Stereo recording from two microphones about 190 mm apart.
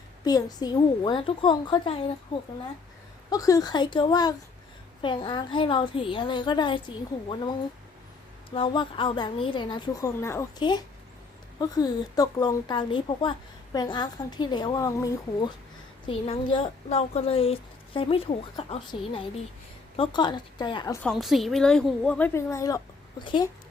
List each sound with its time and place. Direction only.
0.3 s a woman's voice: 20° left (ahead or behind)
3.2 s a woman's voice: 20° left (ahead or behind)
21.0 s speech: centre (ahead or behind); by 23.5 s 25° left (ahead or behind)